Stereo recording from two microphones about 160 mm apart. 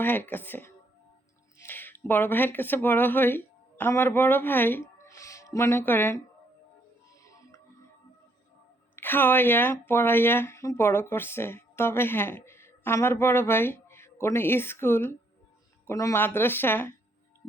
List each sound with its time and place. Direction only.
0.0 s speech: 10° left (ahead or behind)
7.2 s music: 20° left (ahead or behind)
9.0 s speech: 10° left (ahead or behind)